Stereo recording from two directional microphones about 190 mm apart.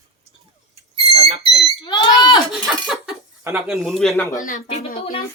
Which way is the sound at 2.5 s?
Centre (ahead or behind).